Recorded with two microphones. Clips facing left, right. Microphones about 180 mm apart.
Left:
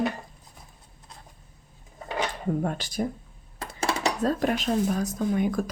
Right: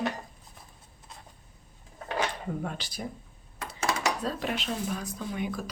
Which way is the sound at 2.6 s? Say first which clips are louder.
Left 8 dB; 45° left (ahead or behind).